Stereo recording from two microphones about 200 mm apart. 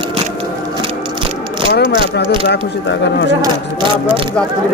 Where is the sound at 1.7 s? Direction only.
55° left (ahead or behind).